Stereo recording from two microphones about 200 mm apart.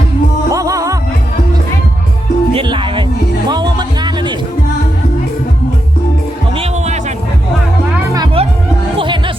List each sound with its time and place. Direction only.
0.5 s music: 15° right (ahead or behind)
2.6 s music: 25° right (ahead or behind)
6.6 s music: 35° right (ahead or behind)
8.1 s music: 20° right (ahead or behind)